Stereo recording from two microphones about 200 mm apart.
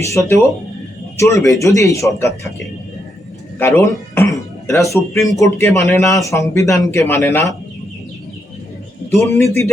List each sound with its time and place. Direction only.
0.0 s a man's voice: 15° left (ahead or behind)
3.6 s speech: 10° left (ahead or behind)
9.2 s speech: 15° left (ahead or behind)